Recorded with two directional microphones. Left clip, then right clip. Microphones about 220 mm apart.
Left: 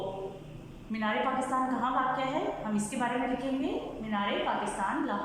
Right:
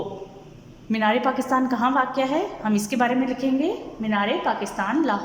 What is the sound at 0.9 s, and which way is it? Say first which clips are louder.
A woman's voice: right 9 dB; 45° right (ahead or behind).